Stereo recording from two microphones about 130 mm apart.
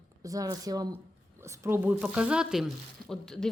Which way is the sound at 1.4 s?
20° right (ahead or behind).